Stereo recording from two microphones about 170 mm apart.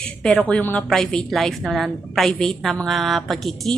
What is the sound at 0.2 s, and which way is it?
A woman's voice, 5° left (ahead or behind).